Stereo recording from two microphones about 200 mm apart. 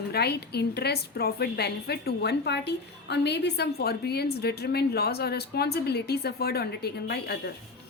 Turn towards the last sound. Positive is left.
turn(degrees=55)  # may be behind; listen again after turning